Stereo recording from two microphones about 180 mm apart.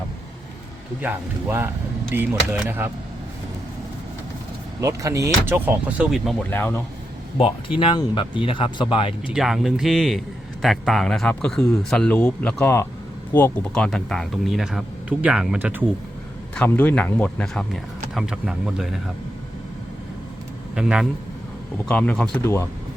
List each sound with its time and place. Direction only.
1.0 s speech: 15° right (ahead or behind)
4.8 s speech: 15° right (ahead or behind)
6.5 s speech: 10° left (ahead or behind)
7.8 s speech: 30° left (ahead or behind)
9.3 s speech: centre (ahead or behind)
16.6 s speech: 10° left (ahead or behind)
20.7 s speech: 5° right (ahead or behind)
21.8 s speech: 5° left (ahead or behind)